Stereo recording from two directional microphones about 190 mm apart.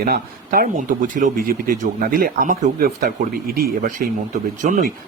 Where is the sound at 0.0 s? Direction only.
50° right (ahead or behind).